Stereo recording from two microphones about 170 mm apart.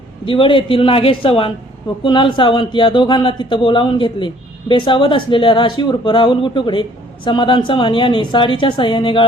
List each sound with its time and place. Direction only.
0.3 s a man's voice: 30° left (ahead or behind)